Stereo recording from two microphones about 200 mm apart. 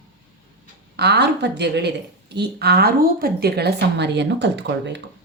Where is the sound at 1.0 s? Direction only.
55° right (ahead or behind).